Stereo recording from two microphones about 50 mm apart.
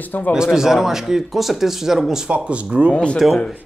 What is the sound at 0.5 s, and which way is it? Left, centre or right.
Speech, centre.